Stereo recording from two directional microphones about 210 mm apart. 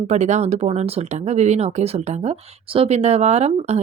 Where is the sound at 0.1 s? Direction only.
35° right (ahead or behind).